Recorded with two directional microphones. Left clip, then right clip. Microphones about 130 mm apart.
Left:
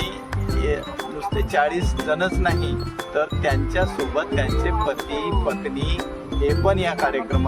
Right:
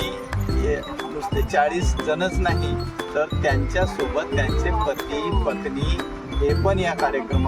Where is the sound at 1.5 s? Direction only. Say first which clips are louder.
Even; centre (ahead or behind).